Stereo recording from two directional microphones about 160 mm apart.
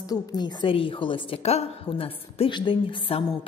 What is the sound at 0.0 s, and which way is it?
A woman's voice, 25° left (ahead or behind).